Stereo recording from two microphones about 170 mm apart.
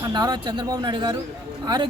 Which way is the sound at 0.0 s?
25° right (ahead or behind).